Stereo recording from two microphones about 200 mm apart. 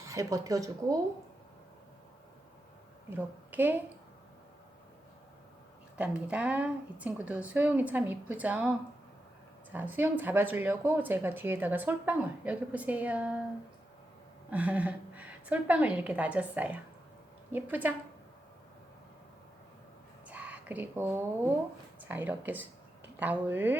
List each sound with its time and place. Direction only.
0.0 s speech: 15° right (ahead or behind)
3.1 s a woman's voice: 10° right (ahead or behind)
6.0 s speech: 5° right (ahead or behind)
9.7 s speech: 10° right (ahead or behind)
14.5 s speech: 5° right (ahead or behind)
20.2 s a sound: 5° right (ahead or behind)
22.1 s speech: 10° right (ahead or behind)